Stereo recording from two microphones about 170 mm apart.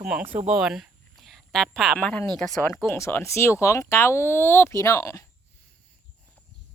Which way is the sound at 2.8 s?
15° left (ahead or behind).